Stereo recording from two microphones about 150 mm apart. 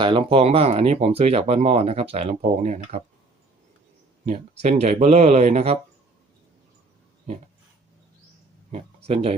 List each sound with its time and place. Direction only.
0.0 s speech: 35° right (ahead or behind)
4.3 s speech: 45° right (ahead or behind)
8.7 s speech: 45° right (ahead or behind)